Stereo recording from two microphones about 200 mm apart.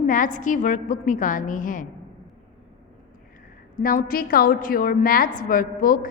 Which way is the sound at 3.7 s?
45° left (ahead or behind).